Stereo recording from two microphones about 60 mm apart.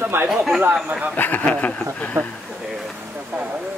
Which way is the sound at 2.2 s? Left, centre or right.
Right.